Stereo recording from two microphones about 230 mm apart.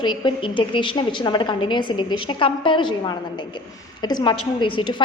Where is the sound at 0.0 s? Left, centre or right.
Left.